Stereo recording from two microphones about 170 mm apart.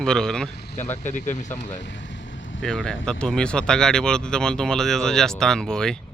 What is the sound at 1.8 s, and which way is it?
Vehicle, 90° left.